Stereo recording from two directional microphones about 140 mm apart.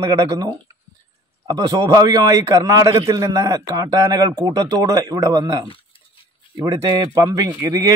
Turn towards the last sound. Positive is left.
turn(degrees=-25)  # may be behind; listen again after turning